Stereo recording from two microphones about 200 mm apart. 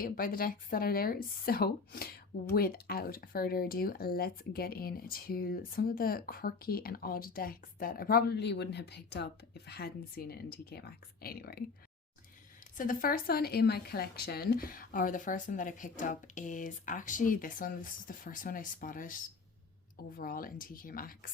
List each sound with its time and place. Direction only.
0.0 s speech: 45° left (ahead or behind)
12.7 s speech: 40° left (ahead or behind)